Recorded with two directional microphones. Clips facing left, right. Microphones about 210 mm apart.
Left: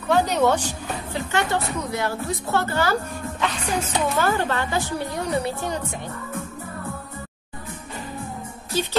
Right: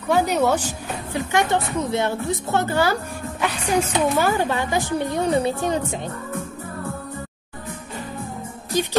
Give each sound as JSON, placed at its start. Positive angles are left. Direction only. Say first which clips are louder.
{"t": 0.1, "sound": "a woman's voice", "louder": "even", "side_deg": -10}
{"t": 8.7, "sound": "a woman's voice", "louder": "right 3 dB", "side_deg": -15}